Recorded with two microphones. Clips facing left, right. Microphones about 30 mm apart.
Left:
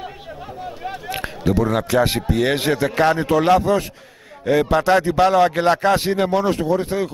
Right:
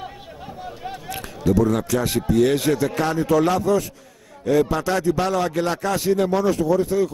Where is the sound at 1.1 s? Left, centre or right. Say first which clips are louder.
Right 1 dB; left.